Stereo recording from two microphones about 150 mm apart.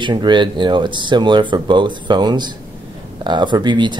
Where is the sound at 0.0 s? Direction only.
30° right (ahead or behind).